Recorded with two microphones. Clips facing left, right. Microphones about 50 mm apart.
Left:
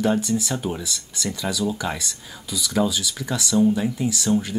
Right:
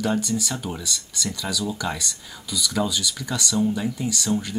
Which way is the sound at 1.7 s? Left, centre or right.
Centre.